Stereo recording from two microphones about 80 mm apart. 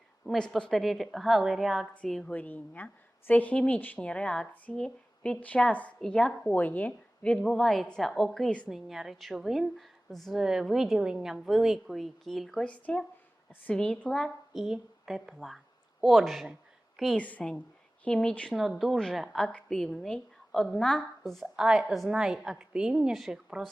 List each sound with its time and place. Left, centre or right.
0.3 s a woman's voice: centre
2.3 s a woman's voice: left
6.5 s a woman's voice: left
8.7 s a woman's voice: centre
12.6 s a woman's voice: centre
14.5 s a woman's voice: centre
17.2 s a woman's voice: centre
18.5 s a woman's voice: centre
21.3 s a woman's voice: centre